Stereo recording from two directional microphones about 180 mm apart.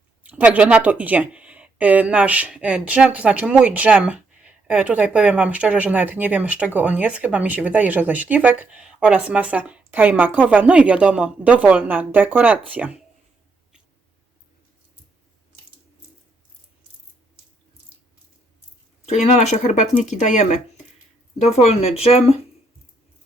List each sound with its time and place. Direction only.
0.2 s speech: 10° right (ahead or behind)
19.0 s speech: 40° left (ahead or behind)